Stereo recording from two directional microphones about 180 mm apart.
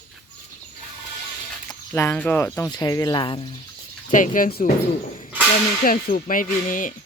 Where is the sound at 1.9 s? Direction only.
10° left (ahead or behind); by 3.6 s 30° left (ahead or behind).